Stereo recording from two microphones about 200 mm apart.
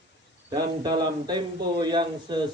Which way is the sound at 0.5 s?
20° right (ahead or behind).